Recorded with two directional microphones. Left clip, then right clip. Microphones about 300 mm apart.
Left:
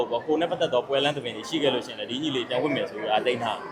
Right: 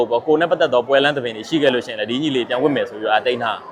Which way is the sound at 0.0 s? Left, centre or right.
Right.